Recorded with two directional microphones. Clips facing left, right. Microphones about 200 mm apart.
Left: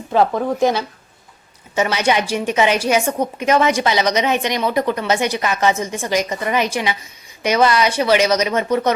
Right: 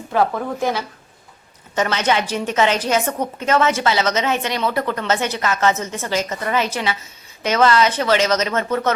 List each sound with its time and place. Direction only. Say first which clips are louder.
0.1 s a woman's voice: left 3 dB; 20° left (ahead or behind)